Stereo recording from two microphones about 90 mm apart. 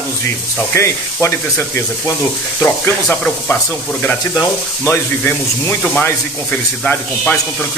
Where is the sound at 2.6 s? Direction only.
20° left (ahead or behind).